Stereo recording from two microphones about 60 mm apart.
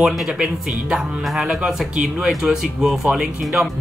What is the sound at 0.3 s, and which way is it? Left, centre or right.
Speech, centre.